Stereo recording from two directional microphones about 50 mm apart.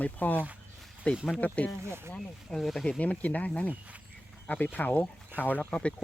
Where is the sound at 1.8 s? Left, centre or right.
Right.